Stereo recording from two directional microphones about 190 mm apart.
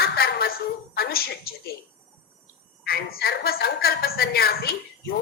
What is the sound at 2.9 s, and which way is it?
A woman's voice, 55° left (ahead or behind).